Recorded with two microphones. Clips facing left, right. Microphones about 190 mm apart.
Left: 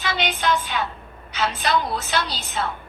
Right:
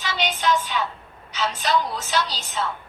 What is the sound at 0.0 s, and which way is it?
A woman's voice, 60° left (ahead or behind).